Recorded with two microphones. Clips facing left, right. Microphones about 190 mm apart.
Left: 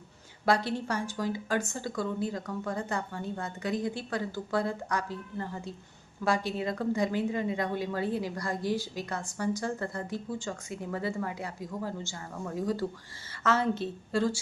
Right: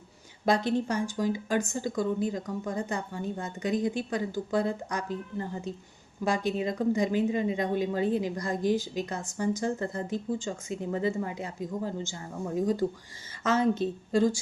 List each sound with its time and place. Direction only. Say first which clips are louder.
0.4 s a woman's voice: right 2 dB; 20° right (ahead or behind)